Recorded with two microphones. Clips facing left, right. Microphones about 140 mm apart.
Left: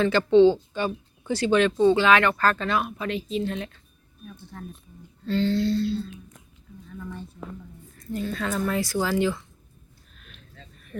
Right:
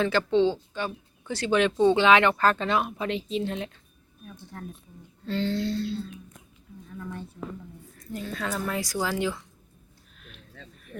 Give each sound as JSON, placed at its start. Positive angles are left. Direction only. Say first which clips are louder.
{"t": 0.0, "sound": "speech", "louder": "left 6 dB", "side_deg": -5}
{"t": 1.5, "sound": "speech", "louder": "left 2 dB", "side_deg": -10}
{"t": 5.2, "sound": "speech", "louder": "left 4 dB", "side_deg": -15}
{"t": 7.9, "sound": "speech", "louder": "left 5 dB", "side_deg": -10}